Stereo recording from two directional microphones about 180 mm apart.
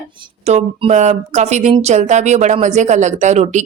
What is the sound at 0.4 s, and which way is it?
Speech, 35° right (ahead or behind).